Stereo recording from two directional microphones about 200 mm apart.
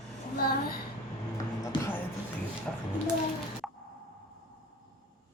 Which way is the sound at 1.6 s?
15° left (ahead or behind).